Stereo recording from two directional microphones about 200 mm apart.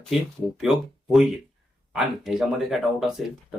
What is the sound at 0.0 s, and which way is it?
Speech, centre (ahead or behind).